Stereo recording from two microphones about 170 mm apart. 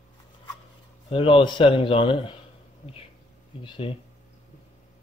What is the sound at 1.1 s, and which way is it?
A man's voice, 30° left (ahead or behind).